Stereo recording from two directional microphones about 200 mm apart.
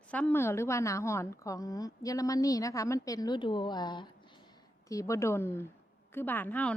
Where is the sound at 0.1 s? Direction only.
10° left (ahead or behind).